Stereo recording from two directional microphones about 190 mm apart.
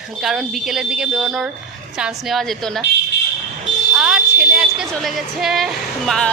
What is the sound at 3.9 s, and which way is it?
Speech, 5° right (ahead or behind).